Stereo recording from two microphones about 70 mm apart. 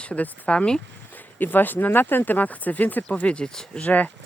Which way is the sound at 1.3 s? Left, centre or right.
Left.